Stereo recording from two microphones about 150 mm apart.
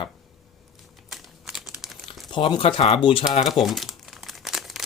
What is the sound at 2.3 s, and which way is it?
Speech, 30° left (ahead or behind).